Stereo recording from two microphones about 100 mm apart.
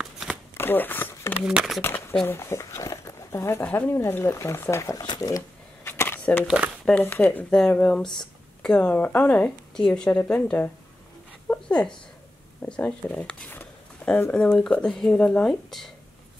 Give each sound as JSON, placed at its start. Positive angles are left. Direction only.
{"t": 0.0, "sound": "shuffling cards", "side_deg": -5}
{"t": 0.6, "sound": "a sound", "side_deg": 20}
{"t": 1.4, "sound": "speech", "side_deg": -5}
{"t": 1.8, "sound": "speech", "side_deg": 25}
{"t": 5.0, "sound": "speech", "side_deg": 45}
{"t": 5.9, "sound": "a sound", "side_deg": 20}
{"t": 6.4, "sound": "speech", "side_deg": -10}
{"t": 6.9, "sound": "speech", "side_deg": 15}
{"t": 11.4, "sound": "a sound", "side_deg": 15}
{"t": 12.6, "sound": "speech", "side_deg": 10}